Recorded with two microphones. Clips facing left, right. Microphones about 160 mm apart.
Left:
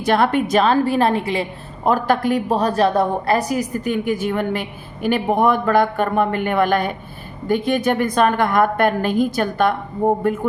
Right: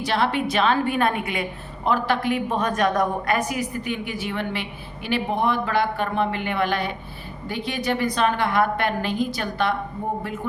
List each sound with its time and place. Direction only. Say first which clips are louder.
0.0 s a woman's voice: left 6 dB; 50° left (ahead or behind); by 1.5 s 30° left (ahead or behind)
1.8 s a woman's voice: left 5 dB; 45° left (ahead or behind)